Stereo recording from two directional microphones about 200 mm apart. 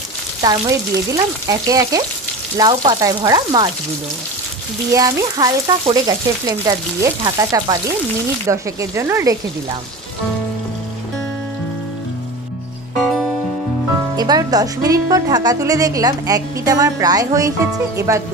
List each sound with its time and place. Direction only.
0.4 s speech: 20° right (ahead or behind)
4.9 s speech: 20° right (ahead or behind)
13.0 s music: centre (ahead or behind)
14.1 s speech: 20° right (ahead or behind)